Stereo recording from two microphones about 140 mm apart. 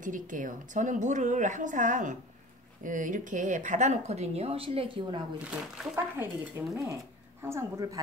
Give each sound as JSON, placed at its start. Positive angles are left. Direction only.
{"t": 0.0, "sound": "a woman's voice", "side_deg": -70}
{"t": 5.4, "sound": "speech", "side_deg": -5}
{"t": 6.1, "sound": "speech", "side_deg": -20}